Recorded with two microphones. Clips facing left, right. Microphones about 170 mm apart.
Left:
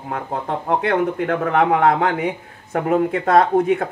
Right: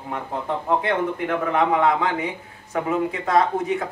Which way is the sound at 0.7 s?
75° left (ahead or behind).